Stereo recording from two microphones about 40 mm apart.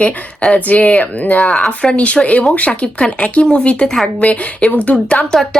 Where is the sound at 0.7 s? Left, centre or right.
Left.